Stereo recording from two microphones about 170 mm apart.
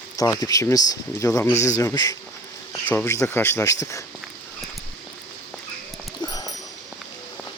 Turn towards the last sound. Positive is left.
turn(degrees=20)  # may be behind; listen again after turning